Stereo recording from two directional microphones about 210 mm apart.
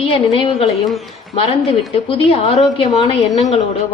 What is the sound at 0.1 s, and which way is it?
A woman's voice, 25° left (ahead or behind).